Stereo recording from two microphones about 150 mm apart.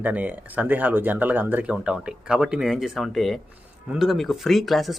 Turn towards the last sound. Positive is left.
turn(degrees=0)  # may be behind; listen again after turning